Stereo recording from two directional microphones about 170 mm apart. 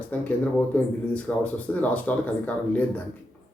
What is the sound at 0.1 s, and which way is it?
Speech, 10° left (ahead or behind).